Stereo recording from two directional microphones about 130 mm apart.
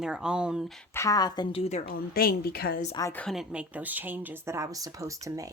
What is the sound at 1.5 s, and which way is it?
Speech, 50° left (ahead or behind).